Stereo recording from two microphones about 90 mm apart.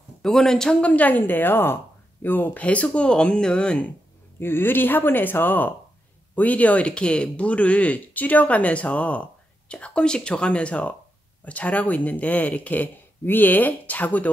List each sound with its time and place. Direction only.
0.2 s speech: 5° left (ahead or behind)
4.4 s speech: 25° left (ahead or behind)